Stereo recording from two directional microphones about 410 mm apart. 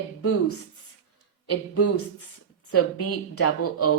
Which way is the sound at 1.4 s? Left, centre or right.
Left.